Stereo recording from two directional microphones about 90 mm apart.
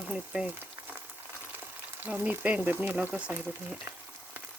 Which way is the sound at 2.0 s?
20° right (ahead or behind).